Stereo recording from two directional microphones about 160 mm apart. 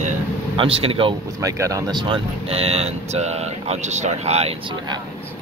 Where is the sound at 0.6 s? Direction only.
35° right (ahead or behind).